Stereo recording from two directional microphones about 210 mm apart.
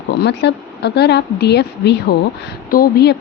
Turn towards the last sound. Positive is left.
turn(degrees=45)  # may be behind; listen again after turning